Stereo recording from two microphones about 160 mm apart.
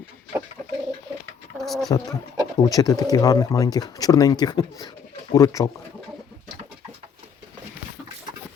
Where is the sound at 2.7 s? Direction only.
25° left (ahead or behind).